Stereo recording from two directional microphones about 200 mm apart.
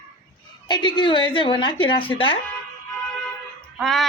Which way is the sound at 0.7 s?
20° left (ahead or behind).